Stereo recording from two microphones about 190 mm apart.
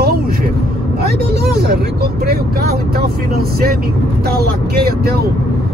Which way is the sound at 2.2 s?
55° right (ahead or behind).